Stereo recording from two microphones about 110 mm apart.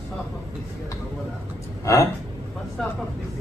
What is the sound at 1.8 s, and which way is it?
Speech, 30° left (ahead or behind).